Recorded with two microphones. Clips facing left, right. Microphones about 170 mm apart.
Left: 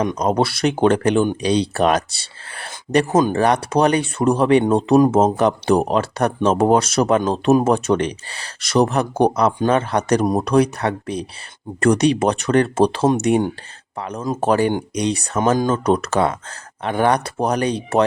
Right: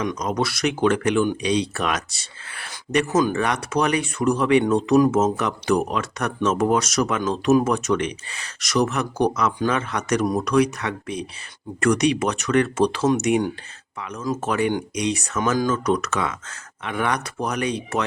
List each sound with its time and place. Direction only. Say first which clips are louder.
0.3 s speech: left 5 dB; 30° left (ahead or behind)